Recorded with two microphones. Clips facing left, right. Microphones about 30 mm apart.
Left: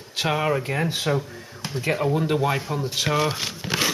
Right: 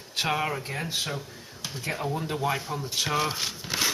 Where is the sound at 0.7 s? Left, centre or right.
Left.